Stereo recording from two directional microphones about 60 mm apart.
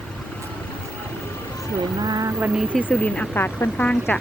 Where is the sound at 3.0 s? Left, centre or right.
Left.